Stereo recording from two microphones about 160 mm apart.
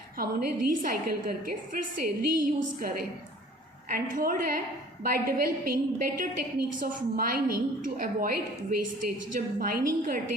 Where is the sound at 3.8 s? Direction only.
65° right (ahead or behind).